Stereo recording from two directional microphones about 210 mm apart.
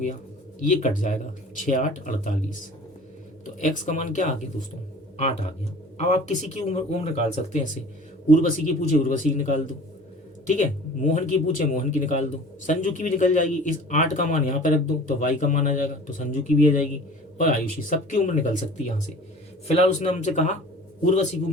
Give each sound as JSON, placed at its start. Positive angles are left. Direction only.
{"t": 0.6, "sound": "speech", "side_deg": 35}
{"t": 3.6, "sound": "speech", "side_deg": 35}